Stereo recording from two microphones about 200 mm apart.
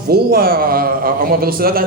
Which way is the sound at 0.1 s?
50° right (ahead or behind).